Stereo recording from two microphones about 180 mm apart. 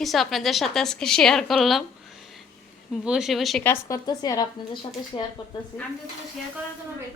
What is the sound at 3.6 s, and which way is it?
A woman's voice, 20° left (ahead or behind).